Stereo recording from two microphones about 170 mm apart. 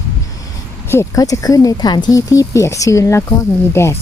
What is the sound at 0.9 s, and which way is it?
Speech, 20° left (ahead or behind).